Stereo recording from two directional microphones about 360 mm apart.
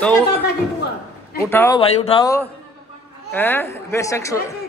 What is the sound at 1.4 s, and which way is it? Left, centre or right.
Speech, centre.